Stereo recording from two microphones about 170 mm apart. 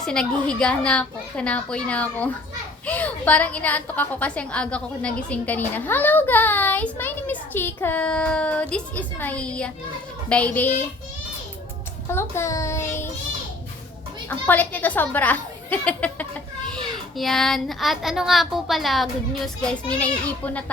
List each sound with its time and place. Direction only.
0.0 s a child's voice: 5° left (ahead or behind)
12.0 s a woman's voice: 15° left (ahead or behind)
14.3 s a woman's voice: 10° left (ahead or behind)